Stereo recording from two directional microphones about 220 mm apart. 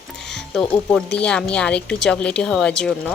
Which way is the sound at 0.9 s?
5° left (ahead or behind).